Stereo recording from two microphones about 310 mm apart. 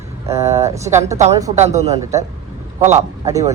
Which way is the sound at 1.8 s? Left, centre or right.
Centre.